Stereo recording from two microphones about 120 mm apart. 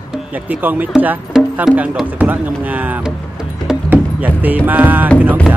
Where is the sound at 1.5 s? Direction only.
10° right (ahead or behind).